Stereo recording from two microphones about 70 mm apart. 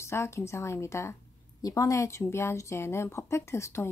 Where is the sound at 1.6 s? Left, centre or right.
Left.